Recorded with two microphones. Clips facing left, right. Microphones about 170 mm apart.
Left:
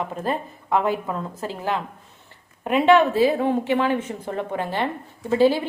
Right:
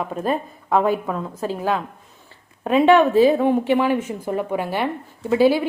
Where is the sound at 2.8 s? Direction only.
15° right (ahead or behind).